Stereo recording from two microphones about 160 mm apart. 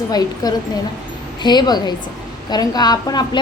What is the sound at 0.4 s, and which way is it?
Speech, 25° left (ahead or behind).